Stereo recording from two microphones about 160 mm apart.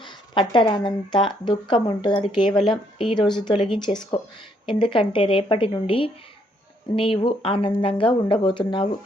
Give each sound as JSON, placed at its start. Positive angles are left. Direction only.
{"t": 0.0, "sound": "speech", "side_deg": 30}